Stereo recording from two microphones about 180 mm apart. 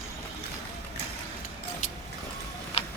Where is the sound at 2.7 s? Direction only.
35° left (ahead or behind).